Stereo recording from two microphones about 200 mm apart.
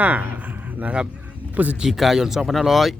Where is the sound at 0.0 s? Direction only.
10° right (ahead or behind).